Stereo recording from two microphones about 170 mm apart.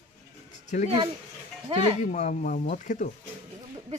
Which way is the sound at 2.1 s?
45° left (ahead or behind).